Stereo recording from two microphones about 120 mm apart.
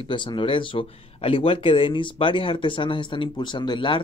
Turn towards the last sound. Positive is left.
turn(degrees=45)  # may be behind; listen again after turning